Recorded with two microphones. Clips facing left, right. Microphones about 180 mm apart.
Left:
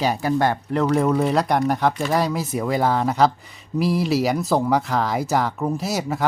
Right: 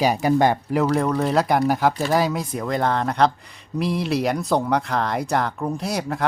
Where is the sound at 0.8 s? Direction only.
Centre (ahead or behind).